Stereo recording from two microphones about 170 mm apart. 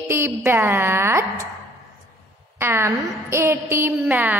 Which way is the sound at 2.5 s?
15° right (ahead or behind).